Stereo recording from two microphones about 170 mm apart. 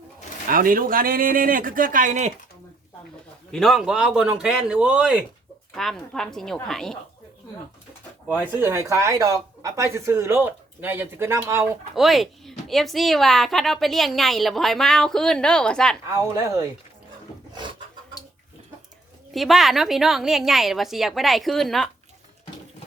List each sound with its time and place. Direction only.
0.4 s a man's voice: 55° right (ahead or behind)
3.5 s speech: centre (ahead or behind)
8.3 s speech: 10° right (ahead or behind)
11.9 s speech: centre (ahead or behind)
16.0 s speech: 20° right (ahead or behind)
17.5 s a sound: 25° right (ahead or behind)
19.3 s speech: centre (ahead or behind)